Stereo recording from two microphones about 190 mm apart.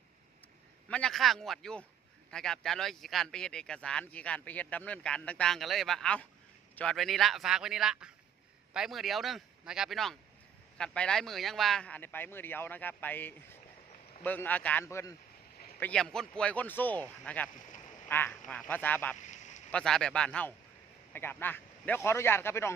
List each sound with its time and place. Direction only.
0.9 s a man's voice: 5° left (ahead or behind)
15.8 s a man's voice: 5° left (ahead or behind)
19.1 s a sound: 40° left (ahead or behind)
19.7 s a man's voice: 5° left (ahead or behind)